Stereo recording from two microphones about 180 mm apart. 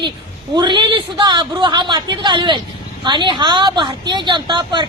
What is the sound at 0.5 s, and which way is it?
A woman's voice, 25° right (ahead or behind).